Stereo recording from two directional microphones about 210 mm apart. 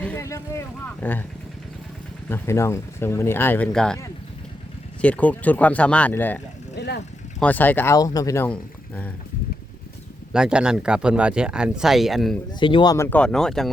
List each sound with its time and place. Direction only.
0.0 s speech: 10° left (ahead or behind)
2.3 s speech: 15° left (ahead or behind)
4.9 s speech: 5° left (ahead or behind)
6.7 s vehicle: 55° left (ahead or behind)
7.3 s speech: 5° left (ahead or behind)
10.3 s speech: 5° right (ahead or behind)
12.5 s speech: 20° left (ahead or behind); by 13.7 s centre (ahead or behind)